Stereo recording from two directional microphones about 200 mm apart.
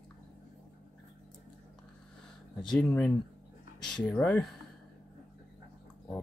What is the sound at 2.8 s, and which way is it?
Speech, 5° left (ahead or behind).